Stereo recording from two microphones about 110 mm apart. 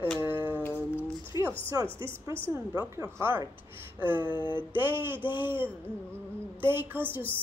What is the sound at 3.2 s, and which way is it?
Speech, 20° right (ahead or behind).